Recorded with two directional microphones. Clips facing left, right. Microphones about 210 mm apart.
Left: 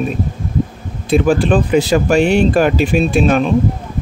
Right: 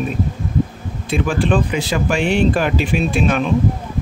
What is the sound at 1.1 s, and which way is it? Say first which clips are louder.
Speech: left 5 dB; 40° left (ahead or behind).